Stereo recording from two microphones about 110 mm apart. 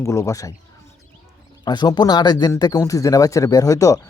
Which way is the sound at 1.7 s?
40° left (ahead or behind).